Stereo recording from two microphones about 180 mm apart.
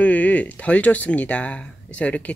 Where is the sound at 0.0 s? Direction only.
10° left (ahead or behind).